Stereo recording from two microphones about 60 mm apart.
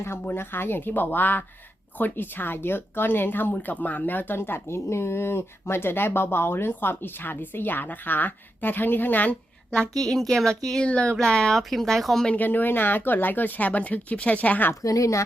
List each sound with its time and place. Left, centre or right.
0.0 s speech: left
9.7 s a woman's voice: centre
10.8 s speech: centre
12.4 s speech: left
14.8 s a woman's voice: left